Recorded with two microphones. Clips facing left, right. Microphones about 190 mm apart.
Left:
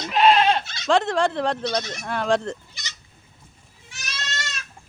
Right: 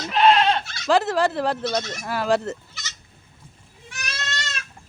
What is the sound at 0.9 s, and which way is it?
Speech, 5° right (ahead or behind).